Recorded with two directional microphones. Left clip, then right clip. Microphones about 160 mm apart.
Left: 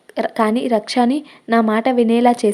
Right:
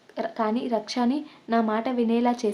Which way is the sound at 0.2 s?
45° left (ahead or behind).